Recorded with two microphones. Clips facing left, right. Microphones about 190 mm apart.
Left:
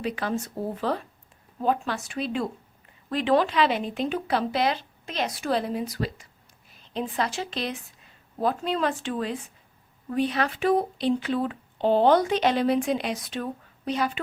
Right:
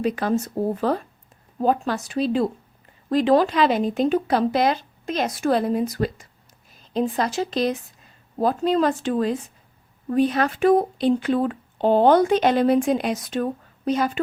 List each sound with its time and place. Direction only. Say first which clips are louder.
0.0 s a woman's voice: right 6 dB; 45° right (ahead or behind)